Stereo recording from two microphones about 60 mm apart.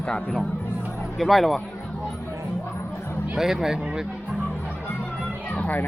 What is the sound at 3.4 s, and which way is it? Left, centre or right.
Speech, centre.